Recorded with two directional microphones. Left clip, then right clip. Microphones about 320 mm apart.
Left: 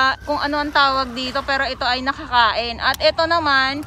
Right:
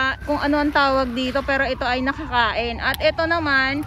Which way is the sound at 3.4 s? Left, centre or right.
Left.